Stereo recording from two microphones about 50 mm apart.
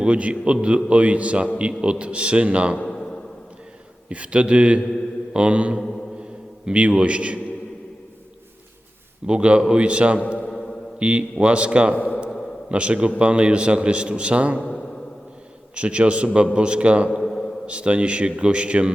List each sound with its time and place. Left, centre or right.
0.0 s a man's voice: right
2.9 s a sound: centre
4.1 s a man's voice: right
9.2 s a man's voice: right
10.2 s a man's voice: left
10.5 s mantra: centre
11.0 s a man's voice: right
11.9 s speech: left
12.6 s a man's voice: right
15.7 s a man's voice: right
17.1 s a sound: centre
17.7 s a man's voice: right